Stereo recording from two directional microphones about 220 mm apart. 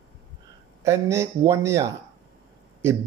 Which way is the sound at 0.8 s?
15° right (ahead or behind).